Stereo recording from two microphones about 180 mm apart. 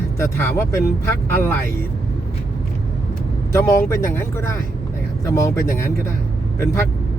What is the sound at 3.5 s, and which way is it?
Speech, 15° left (ahead or behind).